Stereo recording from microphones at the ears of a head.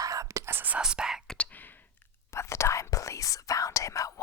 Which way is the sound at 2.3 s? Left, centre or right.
Left.